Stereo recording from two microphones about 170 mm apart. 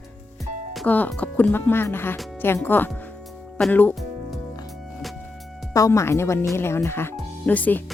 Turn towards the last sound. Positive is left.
turn(degrees=10)  # may be behind; listen again after turning